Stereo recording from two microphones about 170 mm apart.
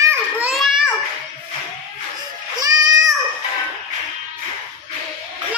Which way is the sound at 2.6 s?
20° right (ahead or behind).